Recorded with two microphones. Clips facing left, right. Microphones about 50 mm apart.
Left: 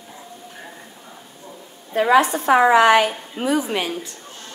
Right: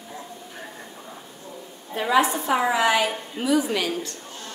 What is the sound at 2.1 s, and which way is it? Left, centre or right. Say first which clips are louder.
A woman's voice: left 5 dB; left.